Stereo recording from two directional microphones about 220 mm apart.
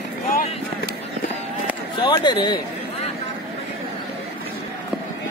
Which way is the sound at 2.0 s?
20° left (ahead or behind).